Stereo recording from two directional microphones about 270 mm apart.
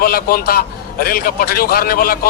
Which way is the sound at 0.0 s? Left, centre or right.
Left.